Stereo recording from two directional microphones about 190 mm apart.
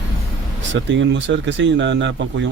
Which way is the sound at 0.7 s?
75° right (ahead or behind).